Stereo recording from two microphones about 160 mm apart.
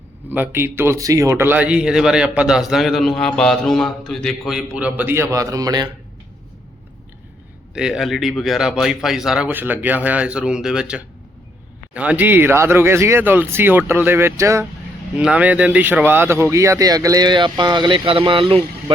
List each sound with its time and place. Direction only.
0.3 s speech: 10° right (ahead or behind)
7.7 s speech: 5° right (ahead or behind)
15.1 s speech: 5° right (ahead or behind); by 18.6 s 35° right (ahead or behind)